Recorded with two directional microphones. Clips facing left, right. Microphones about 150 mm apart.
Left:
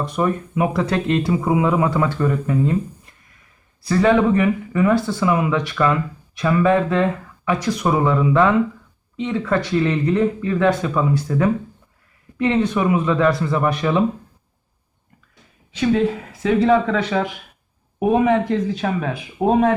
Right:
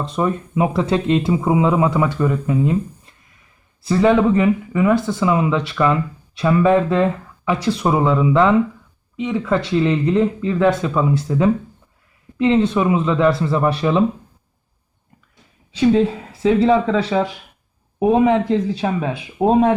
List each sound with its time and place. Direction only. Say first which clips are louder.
0.0 s speech: even; 25° right (ahead or behind)
3.8 s speech: right 1 dB; 20° right (ahead or behind)
9.1 s speech: right 1 dB; 5° right (ahead or behind)
9.5 s speech: right 2 dB; 25° right (ahead or behind)
15.8 s speech: right 3 dB; 25° right (ahead or behind)